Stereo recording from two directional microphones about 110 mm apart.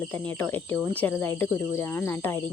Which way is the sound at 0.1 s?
15° left (ahead or behind).